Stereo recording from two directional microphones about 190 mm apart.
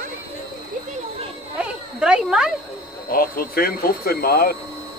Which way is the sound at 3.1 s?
50° left (ahead or behind).